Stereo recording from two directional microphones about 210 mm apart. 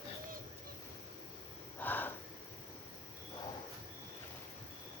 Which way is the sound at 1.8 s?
10° left (ahead or behind).